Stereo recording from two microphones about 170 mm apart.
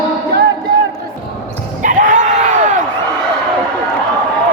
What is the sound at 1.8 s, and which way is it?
Screaming, 50° right (ahead or behind).